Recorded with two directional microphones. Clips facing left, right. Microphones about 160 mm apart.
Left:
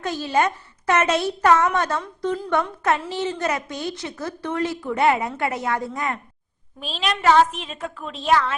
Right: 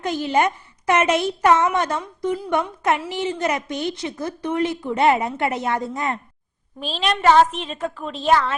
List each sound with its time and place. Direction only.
0.0 s a woman's voice: 15° right (ahead or behind)
6.7 s a woman's voice: centre (ahead or behind)